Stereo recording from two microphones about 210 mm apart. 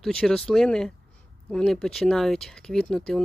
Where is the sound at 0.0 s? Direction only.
5° left (ahead or behind).